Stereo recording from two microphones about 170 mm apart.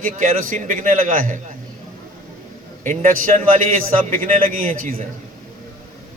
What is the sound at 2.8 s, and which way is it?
Speech, 45° right (ahead or behind).